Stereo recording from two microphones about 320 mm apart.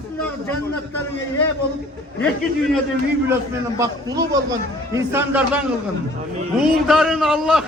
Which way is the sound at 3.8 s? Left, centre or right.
Centre.